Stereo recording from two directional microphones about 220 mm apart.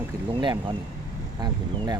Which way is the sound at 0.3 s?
20° right (ahead or behind).